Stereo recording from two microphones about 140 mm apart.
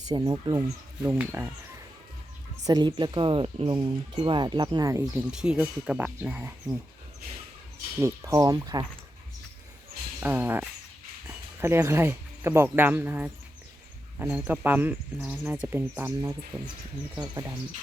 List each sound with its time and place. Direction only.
0.1 s speech: 30° right (ahead or behind)
1.0 s speech: 15° right (ahead or behind)
2.6 s speech: 30° right (ahead or behind)
5.3 s speech: 5° right (ahead or behind)
7.9 s speech: 20° right (ahead or behind)
10.2 s speech: 15° right (ahead or behind)
17.2 s speech: 25° right (ahead or behind)